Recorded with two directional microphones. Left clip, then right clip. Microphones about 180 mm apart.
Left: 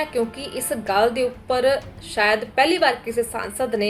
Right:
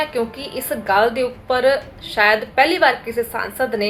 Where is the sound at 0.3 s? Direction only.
25° left (ahead or behind).